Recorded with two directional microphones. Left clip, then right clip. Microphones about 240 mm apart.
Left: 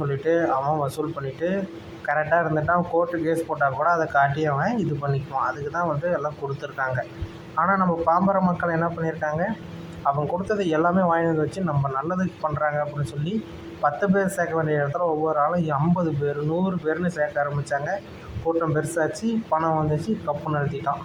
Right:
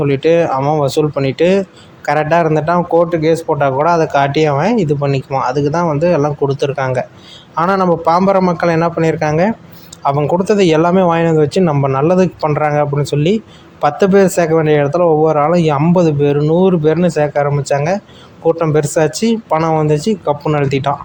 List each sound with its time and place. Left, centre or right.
0.0 s speech: right